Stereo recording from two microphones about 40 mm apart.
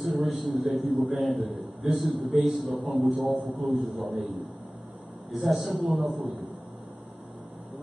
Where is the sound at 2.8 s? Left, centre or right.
Centre.